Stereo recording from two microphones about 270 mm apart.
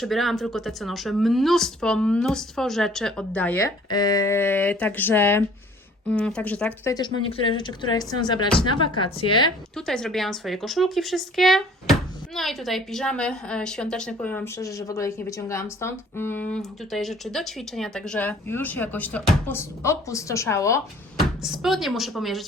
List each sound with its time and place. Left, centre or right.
0.0 s a woman's voice: centre
9.7 s a woman's voice: centre
21.2 s a woman's voice: centre